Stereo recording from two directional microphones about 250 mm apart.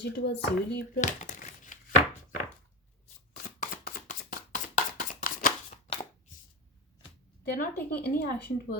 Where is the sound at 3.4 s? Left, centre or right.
Left.